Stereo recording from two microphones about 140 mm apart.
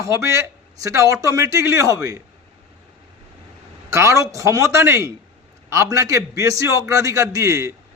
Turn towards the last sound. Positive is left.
turn(degrees=-20)  # may be behind; listen again after turning